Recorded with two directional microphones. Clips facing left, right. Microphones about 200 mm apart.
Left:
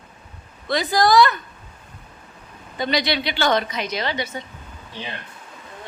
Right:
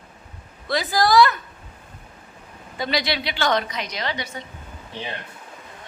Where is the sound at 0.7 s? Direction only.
Centre (ahead or behind).